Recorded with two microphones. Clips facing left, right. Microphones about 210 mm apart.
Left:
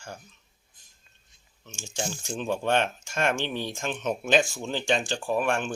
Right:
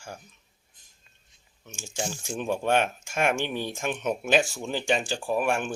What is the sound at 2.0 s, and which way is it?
Speech, 5° right (ahead or behind).